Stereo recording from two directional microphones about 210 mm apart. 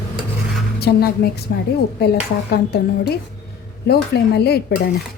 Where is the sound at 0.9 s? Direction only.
50° left (ahead or behind).